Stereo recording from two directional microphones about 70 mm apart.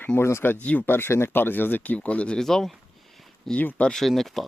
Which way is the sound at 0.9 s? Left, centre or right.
Left.